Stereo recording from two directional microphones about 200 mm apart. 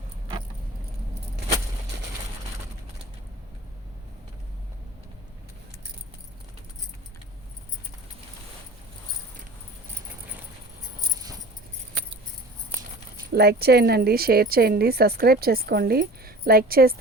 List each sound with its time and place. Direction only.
13.3 s a woman's voice: 55° right (ahead or behind)